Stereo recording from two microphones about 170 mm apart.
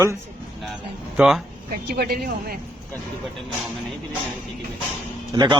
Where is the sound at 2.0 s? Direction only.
65° right (ahead or behind).